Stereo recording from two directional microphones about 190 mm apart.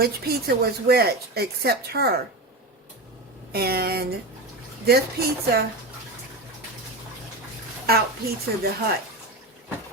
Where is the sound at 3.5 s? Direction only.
55° right (ahead or behind).